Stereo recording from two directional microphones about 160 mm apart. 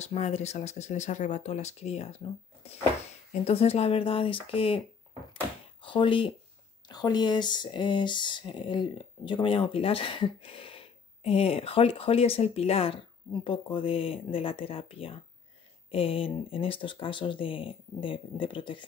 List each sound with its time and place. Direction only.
0.0 s speech: 40° left (ahead or behind)
5.3 s door: 30° left (ahead or behind)
6.9 s speech: 25° left (ahead or behind)